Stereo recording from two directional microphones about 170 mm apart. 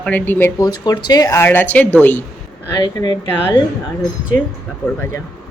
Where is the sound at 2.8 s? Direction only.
20° left (ahead or behind).